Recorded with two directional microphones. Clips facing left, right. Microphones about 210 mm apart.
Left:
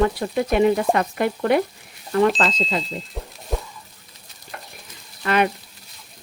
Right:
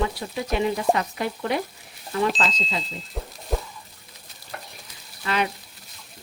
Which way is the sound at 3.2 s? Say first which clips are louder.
Even; centre (ahead or behind).